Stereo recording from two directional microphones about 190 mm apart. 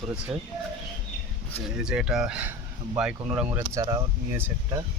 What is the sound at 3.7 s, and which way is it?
Speech, 25° right (ahead or behind).